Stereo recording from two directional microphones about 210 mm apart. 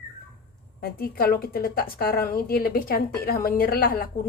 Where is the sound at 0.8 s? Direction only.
45° left (ahead or behind).